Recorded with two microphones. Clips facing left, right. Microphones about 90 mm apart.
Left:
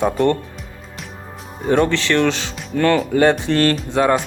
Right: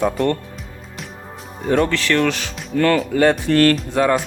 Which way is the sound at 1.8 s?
20° left (ahead or behind).